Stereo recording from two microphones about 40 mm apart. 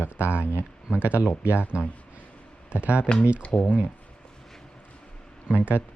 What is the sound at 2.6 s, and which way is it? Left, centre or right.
Speech, right.